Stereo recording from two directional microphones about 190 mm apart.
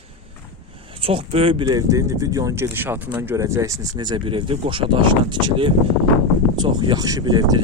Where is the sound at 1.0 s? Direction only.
30° right (ahead or behind).